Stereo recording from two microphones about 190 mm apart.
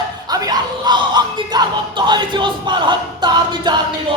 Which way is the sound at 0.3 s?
20° right (ahead or behind).